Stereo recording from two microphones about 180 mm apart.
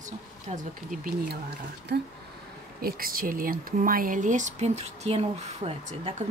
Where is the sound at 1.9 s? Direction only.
65° right (ahead or behind).